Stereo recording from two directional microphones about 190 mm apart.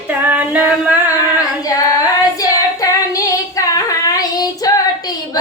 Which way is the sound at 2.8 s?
15° left (ahead or behind).